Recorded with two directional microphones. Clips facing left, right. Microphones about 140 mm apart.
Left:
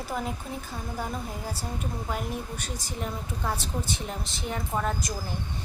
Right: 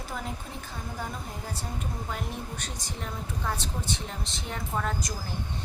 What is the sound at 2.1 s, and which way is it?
A woman's voice, 5° left (ahead or behind).